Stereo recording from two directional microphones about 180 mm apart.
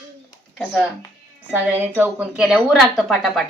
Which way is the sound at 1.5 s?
10° right (ahead or behind).